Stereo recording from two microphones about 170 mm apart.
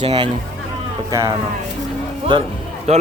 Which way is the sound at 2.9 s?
40° right (ahead or behind).